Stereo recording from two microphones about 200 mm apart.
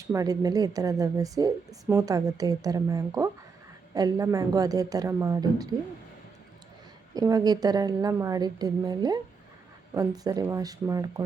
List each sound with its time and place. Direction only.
0.1 s a woman's voice: 15° right (ahead or behind)
7.1 s a woman's voice: 20° right (ahead or behind)